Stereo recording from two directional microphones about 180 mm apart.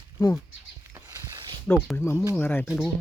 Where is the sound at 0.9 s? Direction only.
15° right (ahead or behind).